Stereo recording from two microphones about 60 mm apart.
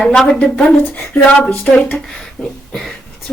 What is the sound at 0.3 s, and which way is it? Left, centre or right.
A woman's voice, centre.